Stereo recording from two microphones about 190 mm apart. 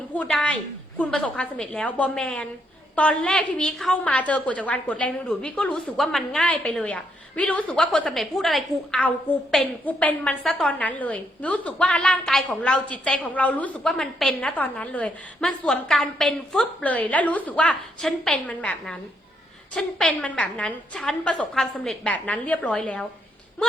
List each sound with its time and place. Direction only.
0.1 s a woman's voice: 5° left (ahead or behind)